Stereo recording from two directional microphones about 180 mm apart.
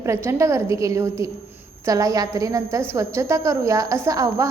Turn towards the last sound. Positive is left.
turn(degrees=-15)  # may be behind; listen again after turning